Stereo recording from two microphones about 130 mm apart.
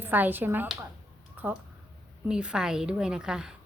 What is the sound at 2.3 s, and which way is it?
A woman's voice, 5° right (ahead or behind).